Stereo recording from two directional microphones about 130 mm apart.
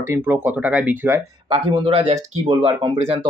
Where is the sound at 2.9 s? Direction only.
55° right (ahead or behind).